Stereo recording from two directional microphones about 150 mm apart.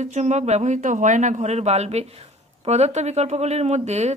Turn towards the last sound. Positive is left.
turn(degrees=-50)  # may be behind; listen again after turning